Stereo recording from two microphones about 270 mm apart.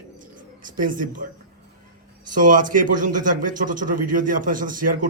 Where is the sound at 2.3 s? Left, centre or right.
Right.